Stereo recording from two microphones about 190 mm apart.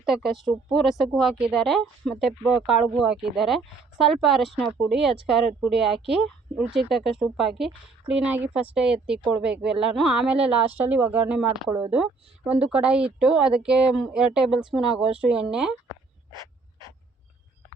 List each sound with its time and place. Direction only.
0.0 s speech: centre (ahead or behind)